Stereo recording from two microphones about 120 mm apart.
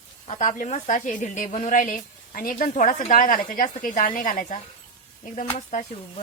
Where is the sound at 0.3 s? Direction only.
75° left (ahead or behind).